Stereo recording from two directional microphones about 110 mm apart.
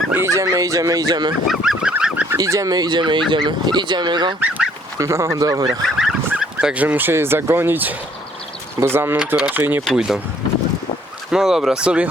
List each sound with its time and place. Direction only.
0.1 s speech: 25° right (ahead or behind)
1.5 s goose: 5° right (ahead or behind)
2.4 s speech: 30° right (ahead or behind)
4.4 s goose: 15° right (ahead or behind)
4.9 s speech: 25° right (ahead or behind)
5.8 s fowl: 5° right (ahead or behind)
6.8 s speech: 20° right (ahead or behind)
9.1 s speech: 10° right (ahead or behind)
9.8 s speech: centre (ahead or behind)
11.3 s speech: 5° right (ahead or behind)